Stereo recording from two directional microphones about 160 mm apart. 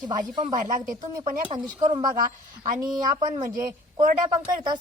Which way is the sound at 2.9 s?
25° right (ahead or behind).